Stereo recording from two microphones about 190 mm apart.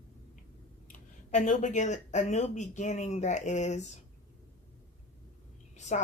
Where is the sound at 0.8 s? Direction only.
40° left (ahead or behind).